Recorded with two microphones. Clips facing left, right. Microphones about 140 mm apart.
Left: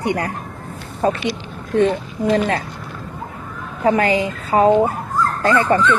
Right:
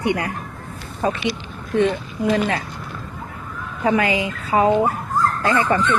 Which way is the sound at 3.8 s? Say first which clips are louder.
Left 3 dB; 40° left (ahead or behind).